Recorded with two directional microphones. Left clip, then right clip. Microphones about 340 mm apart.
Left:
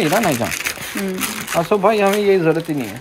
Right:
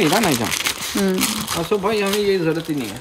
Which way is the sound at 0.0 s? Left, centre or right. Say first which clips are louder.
Left 1 dB; centre.